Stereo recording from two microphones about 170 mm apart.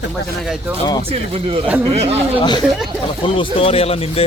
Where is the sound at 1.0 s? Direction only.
35° right (ahead or behind).